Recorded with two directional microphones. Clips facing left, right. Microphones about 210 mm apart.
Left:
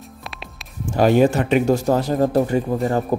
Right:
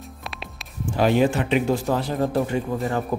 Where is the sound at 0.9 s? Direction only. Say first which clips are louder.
Left 4 dB; 45° left (ahead or behind).